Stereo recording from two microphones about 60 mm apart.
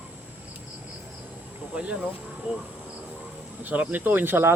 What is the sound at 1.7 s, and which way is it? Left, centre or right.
Speech, centre.